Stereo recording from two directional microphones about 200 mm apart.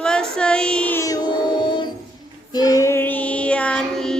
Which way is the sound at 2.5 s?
20° left (ahead or behind).